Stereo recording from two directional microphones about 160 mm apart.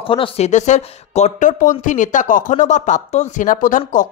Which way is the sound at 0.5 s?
50° left (ahead or behind).